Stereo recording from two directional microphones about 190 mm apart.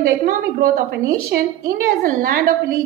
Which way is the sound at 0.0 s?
45° right (ahead or behind).